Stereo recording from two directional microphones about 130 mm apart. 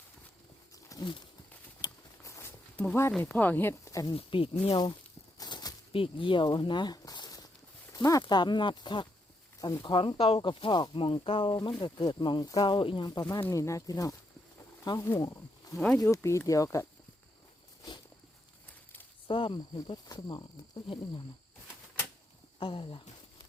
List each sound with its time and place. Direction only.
0.9 s a sound: 30° left (ahead or behind)
1.8 s patter: 25° left (ahead or behind)
2.7 s speech: 15° left (ahead or behind)
4.1 s speech: 45° left (ahead or behind)
5.4 s a sound: 30° left (ahead or behind)
7.9 s speech: 30° left (ahead or behind)
13.5 s speech: 25° left (ahead or behind)
19.3 s speech: 40° left (ahead or behind)
22.6 s speech: 40° left (ahead or behind)